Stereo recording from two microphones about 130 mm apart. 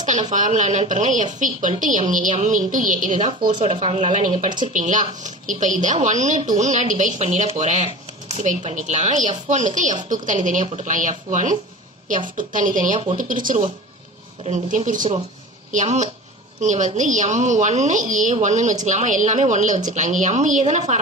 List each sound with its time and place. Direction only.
0.0 s a woman's voice: 70° right (ahead or behind)
3.6 s a woman's voice: 50° right (ahead or behind); by 11.5 s 75° right (ahead or behind)
12.4 s speech: 90° right
14.4 s a woman's voice: 60° right (ahead or behind); by 15.0 s 80° right
15.7 s a woman's voice: 70° right (ahead or behind)